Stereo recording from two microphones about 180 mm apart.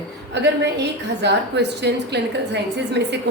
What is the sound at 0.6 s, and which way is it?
A woman's voice, 70° right (ahead or behind).